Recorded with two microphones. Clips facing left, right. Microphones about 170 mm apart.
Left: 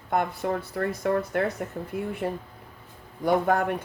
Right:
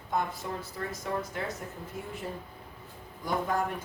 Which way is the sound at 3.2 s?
65° left (ahead or behind).